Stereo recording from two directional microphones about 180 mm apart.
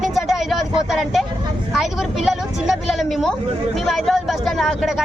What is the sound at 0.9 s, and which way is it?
Speech, centre (ahead or behind).